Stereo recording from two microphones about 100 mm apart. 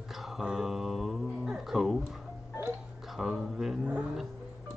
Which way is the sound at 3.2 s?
5° right (ahead or behind).